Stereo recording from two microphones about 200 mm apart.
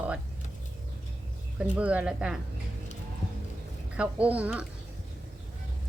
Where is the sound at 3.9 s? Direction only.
5° right (ahead or behind).